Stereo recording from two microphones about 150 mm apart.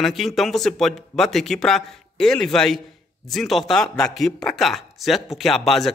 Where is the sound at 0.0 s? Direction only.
Centre (ahead or behind).